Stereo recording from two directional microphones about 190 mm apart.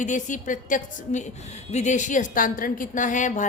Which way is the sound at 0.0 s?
40° left (ahead or behind).